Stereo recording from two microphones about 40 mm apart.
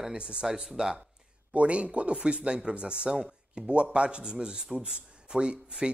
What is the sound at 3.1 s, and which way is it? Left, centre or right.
Speech, centre.